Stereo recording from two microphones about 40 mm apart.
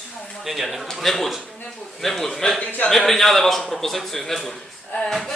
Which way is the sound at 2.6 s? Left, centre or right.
Left.